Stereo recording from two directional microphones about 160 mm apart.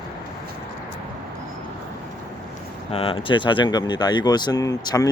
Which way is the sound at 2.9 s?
35° left (ahead or behind).